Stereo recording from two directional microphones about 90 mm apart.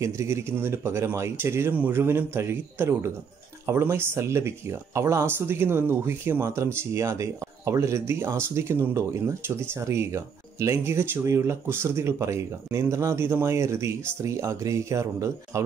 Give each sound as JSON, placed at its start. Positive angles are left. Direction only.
{"t": 0.0, "sound": "speech", "side_deg": -30}